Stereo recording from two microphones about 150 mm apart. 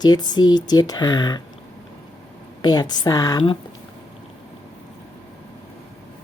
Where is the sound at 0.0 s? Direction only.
30° left (ahead or behind).